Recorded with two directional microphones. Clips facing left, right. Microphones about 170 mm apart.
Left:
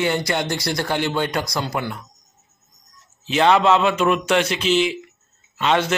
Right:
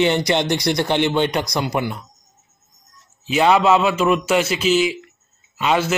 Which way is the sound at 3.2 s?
5° right (ahead or behind).